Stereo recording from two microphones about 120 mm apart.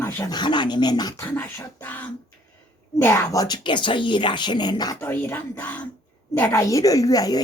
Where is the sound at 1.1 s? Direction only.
15° left (ahead or behind); by 5.0 s 35° left (ahead or behind).